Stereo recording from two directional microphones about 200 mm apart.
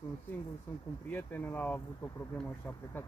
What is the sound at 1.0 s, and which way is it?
Speech, 10° left (ahead or behind).